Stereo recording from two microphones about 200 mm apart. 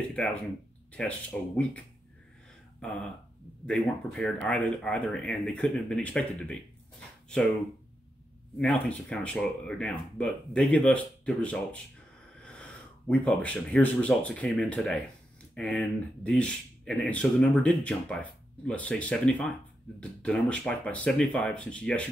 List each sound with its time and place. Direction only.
0.1 s speech: 5° left (ahead or behind)
2.8 s speech: 5° left (ahead or behind)
8.5 s speech: 5° left (ahead or behind)
13.1 s speech: 5° left (ahead or behind)